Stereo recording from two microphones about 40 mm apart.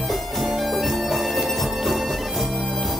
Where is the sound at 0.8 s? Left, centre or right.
Centre.